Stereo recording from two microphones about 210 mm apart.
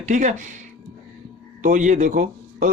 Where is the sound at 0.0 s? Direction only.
35° right (ahead or behind).